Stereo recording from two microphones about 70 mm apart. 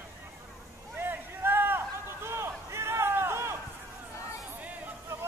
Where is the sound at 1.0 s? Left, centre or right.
Right.